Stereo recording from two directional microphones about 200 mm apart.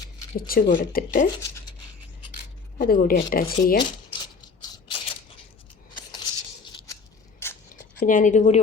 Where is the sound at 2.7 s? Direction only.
45° left (ahead or behind).